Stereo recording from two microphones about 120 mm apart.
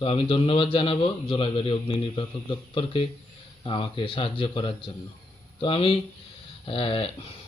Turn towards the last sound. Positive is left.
turn(degrees=50)  # may be behind; listen again after turning